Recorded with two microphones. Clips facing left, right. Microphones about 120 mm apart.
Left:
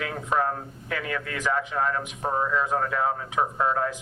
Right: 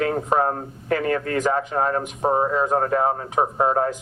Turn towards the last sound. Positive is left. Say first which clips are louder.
# right 5 dB
turn(degrees=-40)  # may be behind; listen again after turning